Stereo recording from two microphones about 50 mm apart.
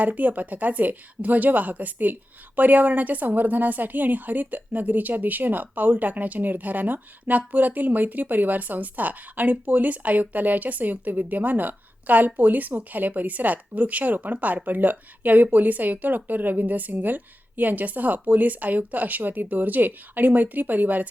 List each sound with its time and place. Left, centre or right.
0.0 s a woman's voice: right